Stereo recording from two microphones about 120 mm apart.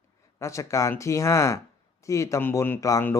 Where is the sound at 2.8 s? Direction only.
30° left (ahead or behind).